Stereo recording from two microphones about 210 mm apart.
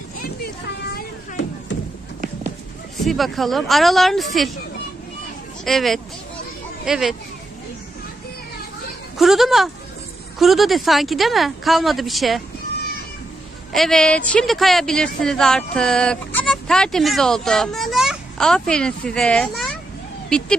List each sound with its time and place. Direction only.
1.7 s music: 60° left (ahead or behind)
3.0 s speech: centre (ahead or behind)
5.6 s speech: centre (ahead or behind)
9.1 s speech: centre (ahead or behind)
13.7 s speech: centre (ahead or behind)